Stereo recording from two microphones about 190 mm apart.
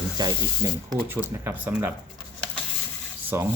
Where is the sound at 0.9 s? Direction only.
10° right (ahead or behind).